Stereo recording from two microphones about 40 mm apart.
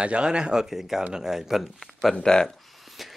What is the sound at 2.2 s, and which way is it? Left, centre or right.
Speech, centre.